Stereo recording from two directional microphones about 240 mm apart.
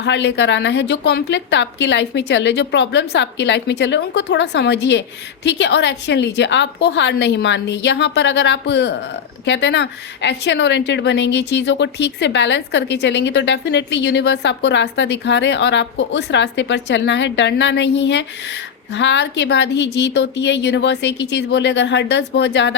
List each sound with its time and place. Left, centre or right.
0.0 s a woman's voice: left